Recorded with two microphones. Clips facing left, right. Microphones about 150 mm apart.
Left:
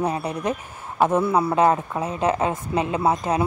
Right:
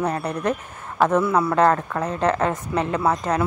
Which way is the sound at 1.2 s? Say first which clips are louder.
Even; 30° left (ahead or behind).